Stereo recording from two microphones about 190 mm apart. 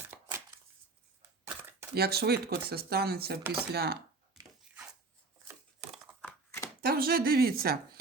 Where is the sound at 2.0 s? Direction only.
55° right (ahead or behind).